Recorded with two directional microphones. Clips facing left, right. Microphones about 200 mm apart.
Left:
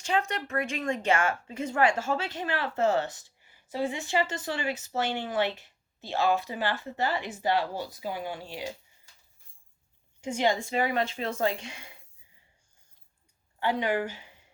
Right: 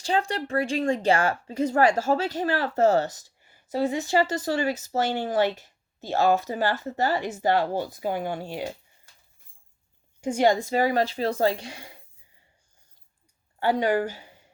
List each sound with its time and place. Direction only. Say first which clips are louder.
0.0 s a woman's voice: right 3 dB; 30° right (ahead or behind); by 8.7 s 50° right (ahead or behind)
10.2 s a woman's voice: right 6 dB; 40° right (ahead or behind)
13.6 s a woman's voice: right 5 dB; 40° right (ahead or behind)